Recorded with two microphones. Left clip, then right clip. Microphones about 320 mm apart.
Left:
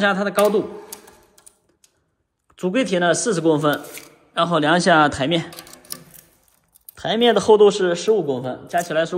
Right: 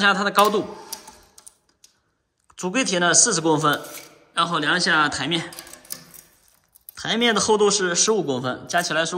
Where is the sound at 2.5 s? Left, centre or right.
Centre.